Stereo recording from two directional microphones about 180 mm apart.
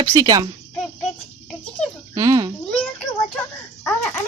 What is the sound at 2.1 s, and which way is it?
Speech, 20° right (ahead or behind).